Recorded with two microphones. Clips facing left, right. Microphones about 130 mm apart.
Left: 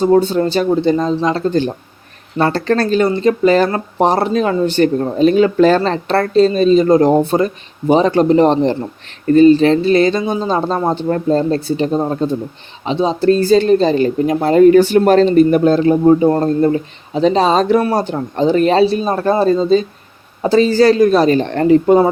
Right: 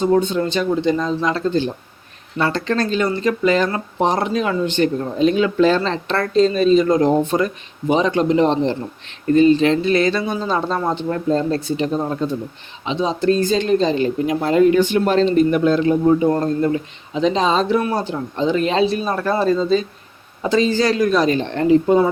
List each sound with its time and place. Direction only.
0.0 s speech: 35° left (ahead or behind)
1.5 s speech: 50° left (ahead or behind)
2.4 s speech: 40° left (ahead or behind)
4.1 s speech: 35° left (ahead or behind); by 22.0 s 50° left (ahead or behind)